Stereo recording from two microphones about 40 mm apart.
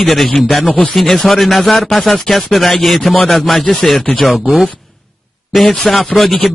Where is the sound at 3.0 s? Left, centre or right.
Left.